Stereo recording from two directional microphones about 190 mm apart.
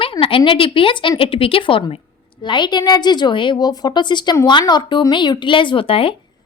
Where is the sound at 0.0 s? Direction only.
30° left (ahead or behind).